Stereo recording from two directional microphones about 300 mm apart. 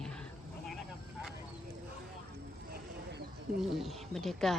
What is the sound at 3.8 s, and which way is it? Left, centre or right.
Speech, centre.